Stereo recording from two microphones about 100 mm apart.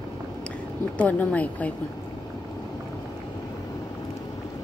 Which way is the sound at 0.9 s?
15° left (ahead or behind).